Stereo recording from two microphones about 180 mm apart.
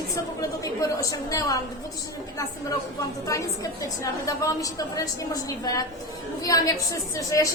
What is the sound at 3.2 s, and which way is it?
A woman's voice, 20° left (ahead or behind).